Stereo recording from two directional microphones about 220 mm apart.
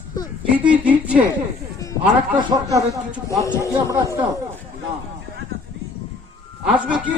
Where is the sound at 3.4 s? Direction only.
15° left (ahead or behind).